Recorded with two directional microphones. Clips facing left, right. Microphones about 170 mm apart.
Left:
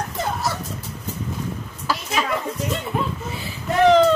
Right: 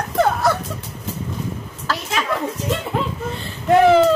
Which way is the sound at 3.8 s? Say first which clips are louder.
Left 1 dB; 5° right (ahead or behind).